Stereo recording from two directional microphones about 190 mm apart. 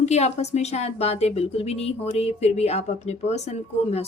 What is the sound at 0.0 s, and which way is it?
Speech, 35° left (ahead or behind).